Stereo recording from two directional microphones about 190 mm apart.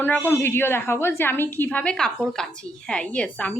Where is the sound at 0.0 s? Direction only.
10° left (ahead or behind).